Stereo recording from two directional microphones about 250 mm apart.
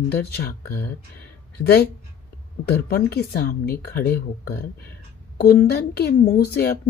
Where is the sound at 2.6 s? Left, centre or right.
Left.